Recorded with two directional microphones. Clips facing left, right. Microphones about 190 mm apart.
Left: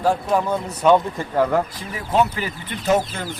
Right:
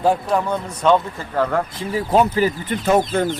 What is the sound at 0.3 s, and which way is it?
Speech, 5° left (ahead or behind).